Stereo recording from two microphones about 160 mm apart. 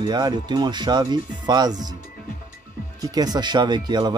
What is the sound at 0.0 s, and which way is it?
Speech, 25° right (ahead or behind).